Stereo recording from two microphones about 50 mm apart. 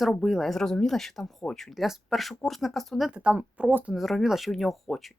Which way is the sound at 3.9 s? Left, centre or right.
Centre.